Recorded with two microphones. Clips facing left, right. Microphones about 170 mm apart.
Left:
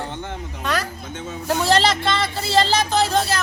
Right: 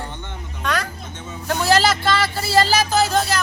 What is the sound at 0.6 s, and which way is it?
Speech, 5° left (ahead or behind).